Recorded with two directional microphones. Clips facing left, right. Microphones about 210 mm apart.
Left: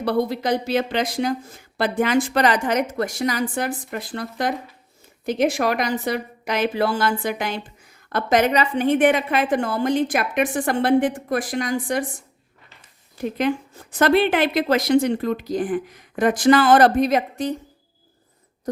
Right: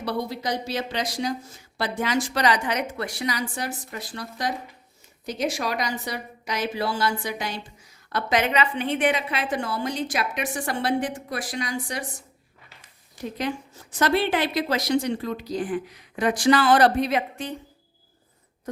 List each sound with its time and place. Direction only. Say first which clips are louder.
0.0 s a woman's voice: left 7 dB; 55° left (ahead or behind)
13.2 s a woman's voice: left 7 dB; 55° left (ahead or behind); by 17.5 s 40° left (ahead or behind)